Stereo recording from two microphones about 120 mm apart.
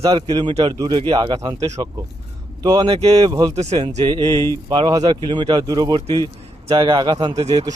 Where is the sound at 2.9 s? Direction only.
50° right (ahead or behind).